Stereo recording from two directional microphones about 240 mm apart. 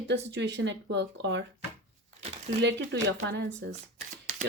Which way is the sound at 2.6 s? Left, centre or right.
Right.